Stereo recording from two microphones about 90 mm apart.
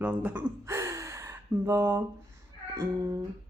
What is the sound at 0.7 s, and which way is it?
Gasp, 35° right (ahead or behind).